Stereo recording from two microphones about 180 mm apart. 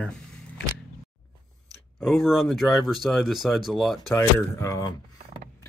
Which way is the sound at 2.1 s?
Centre (ahead or behind).